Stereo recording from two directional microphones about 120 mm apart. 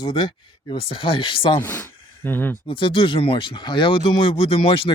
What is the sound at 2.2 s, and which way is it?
Speech, 15° left (ahead or behind).